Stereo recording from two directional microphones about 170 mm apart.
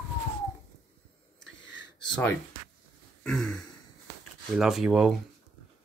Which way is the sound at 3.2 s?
5° left (ahead or behind).